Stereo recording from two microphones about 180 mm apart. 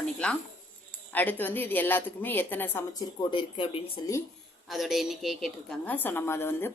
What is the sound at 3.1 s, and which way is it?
Speech, 25° left (ahead or behind).